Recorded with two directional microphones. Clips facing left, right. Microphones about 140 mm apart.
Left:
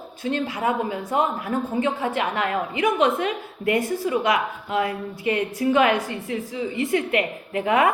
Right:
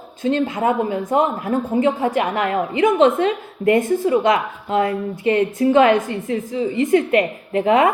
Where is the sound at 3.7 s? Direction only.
50° right (ahead or behind).